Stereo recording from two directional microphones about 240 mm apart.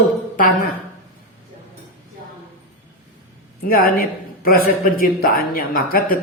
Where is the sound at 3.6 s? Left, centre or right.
Left.